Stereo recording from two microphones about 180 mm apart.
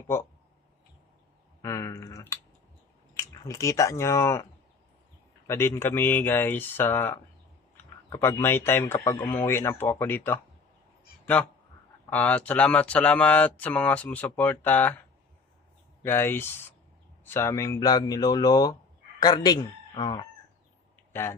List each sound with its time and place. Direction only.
0.1 s speech: 10° left (ahead or behind)
1.6 s a sound: 15° left (ahead or behind)
3.4 s speech: 15° left (ahead or behind)
5.5 s speech: 15° left (ahead or behind)
12.1 s speech: 10° left (ahead or behind)
16.0 s speech: 10° left (ahead or behind)
21.1 s speech: 15° left (ahead or behind)